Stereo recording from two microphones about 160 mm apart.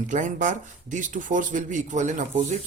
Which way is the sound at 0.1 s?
50° right (ahead or behind).